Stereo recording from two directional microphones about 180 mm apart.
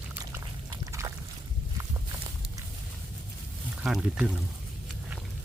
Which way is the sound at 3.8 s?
5° right (ahead or behind).